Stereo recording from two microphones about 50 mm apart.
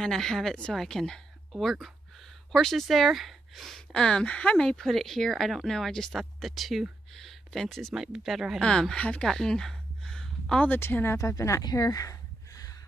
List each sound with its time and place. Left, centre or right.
0.0 s speech: centre
3.9 s speech: centre
4.8 s speech: centre
5.9 s speech: centre
6.4 s speech: centre
7.9 s speech: centre
8.5 s speech: centre
9.3 s a sound: centre
10.8 s speech: left
11.2 s speech: left